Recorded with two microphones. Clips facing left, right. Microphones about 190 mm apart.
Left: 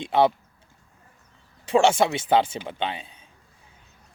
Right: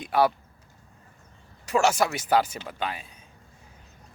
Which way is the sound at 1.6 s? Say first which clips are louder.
Left 4 dB; 30° left (ahead or behind).